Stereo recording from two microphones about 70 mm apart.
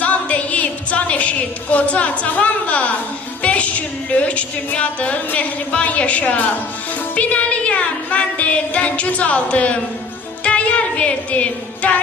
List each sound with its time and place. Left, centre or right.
0.0 s a woman's voice: left
3.4 s music: centre